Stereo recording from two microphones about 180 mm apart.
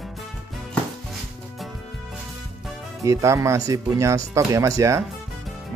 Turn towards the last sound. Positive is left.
turn(degrees=-20)  # may be behind; listen again after turning